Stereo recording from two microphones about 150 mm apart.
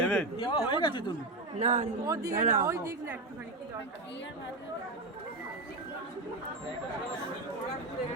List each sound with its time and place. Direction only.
0.0 s a sound: 15° left (ahead or behind)
0.3 s speech: 35° left (ahead or behind)
1.5 s speech: 55° right (ahead or behind)
2.0 s a woman's voice: 25° right (ahead or behind)
2.3 s a woman's voice: 60° right (ahead or behind)
2.6 s a woman's voice: 20° right (ahead or behind)